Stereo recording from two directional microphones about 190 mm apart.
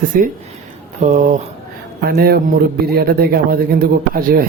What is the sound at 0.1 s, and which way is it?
Speech, 45° right (ahead or behind).